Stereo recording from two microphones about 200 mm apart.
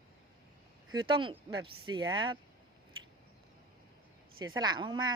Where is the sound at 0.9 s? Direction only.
25° right (ahead or behind).